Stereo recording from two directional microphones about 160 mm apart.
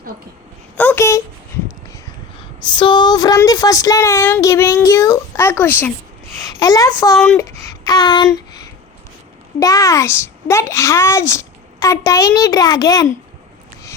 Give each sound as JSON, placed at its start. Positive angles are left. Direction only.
{"t": 0.8, "sound": "speech", "side_deg": 15}
{"t": 2.6, "sound": "a child's voice", "side_deg": 30}
{"t": 6.5, "sound": "a child's voice", "side_deg": 25}
{"t": 7.3, "sound": "a sound", "side_deg": 20}
{"t": 9.6, "sound": "a child's voice", "side_deg": 20}